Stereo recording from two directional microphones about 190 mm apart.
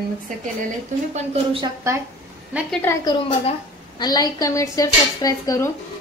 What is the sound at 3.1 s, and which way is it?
A woman's voice, 30° left (ahead or behind).